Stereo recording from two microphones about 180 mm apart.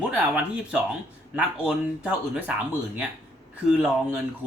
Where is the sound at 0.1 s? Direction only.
5° right (ahead or behind).